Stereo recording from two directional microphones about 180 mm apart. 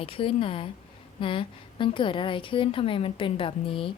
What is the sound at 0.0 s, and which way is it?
A woman's voice, 30° left (ahead or behind).